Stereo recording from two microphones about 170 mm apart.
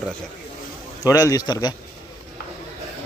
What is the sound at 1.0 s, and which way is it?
Speech, 20° left (ahead or behind).